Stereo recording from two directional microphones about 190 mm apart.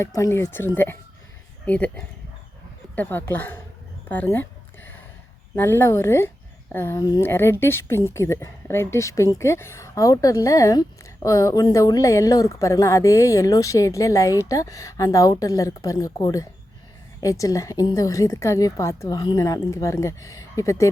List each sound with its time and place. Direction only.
0.0 s a woman's voice: 15° left (ahead or behind)
5.5 s a woman's voice: 10° left (ahead or behind)